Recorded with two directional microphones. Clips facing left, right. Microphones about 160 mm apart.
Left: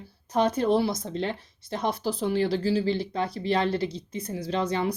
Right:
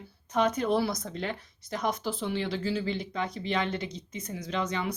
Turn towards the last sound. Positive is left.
turn(degrees=35)  # may be behind; listen again after turning